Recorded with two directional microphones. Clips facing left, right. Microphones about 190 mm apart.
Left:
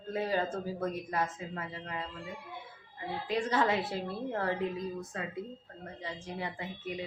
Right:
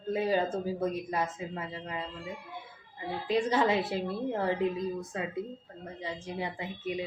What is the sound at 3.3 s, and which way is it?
A woman's voice, 20° right (ahead or behind).